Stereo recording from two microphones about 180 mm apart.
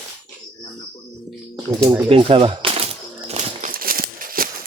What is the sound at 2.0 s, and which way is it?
Typewriter, 30° right (ahead or behind).